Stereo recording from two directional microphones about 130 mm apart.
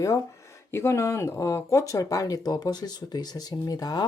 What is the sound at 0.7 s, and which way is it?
Speech, 20° left (ahead or behind).